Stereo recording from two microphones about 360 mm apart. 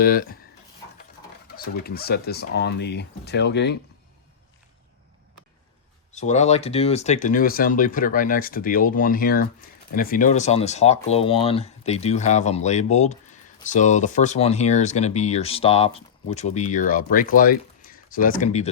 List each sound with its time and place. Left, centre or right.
0.0 s speech: left
1.5 s speech: left
6.1 s speech: centre